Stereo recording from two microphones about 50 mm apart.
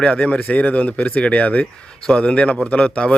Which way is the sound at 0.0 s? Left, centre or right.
Left.